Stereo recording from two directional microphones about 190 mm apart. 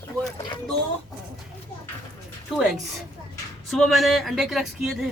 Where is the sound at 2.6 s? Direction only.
5° right (ahead or behind).